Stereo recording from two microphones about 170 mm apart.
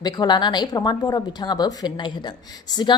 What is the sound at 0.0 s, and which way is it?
A woman's voice, 25° left (ahead or behind).